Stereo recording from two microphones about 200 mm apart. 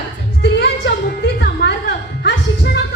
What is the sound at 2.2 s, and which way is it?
Music, 55° left (ahead or behind).